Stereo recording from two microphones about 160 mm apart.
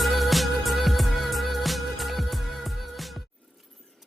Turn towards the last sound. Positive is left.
turn(degrees=0)  # may be behind; listen again after turning